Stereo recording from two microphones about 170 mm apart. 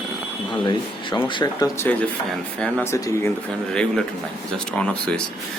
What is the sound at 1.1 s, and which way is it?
Speech, 25° left (ahead or behind).